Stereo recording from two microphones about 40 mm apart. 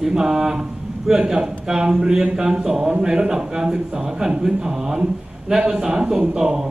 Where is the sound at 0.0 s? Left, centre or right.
Centre.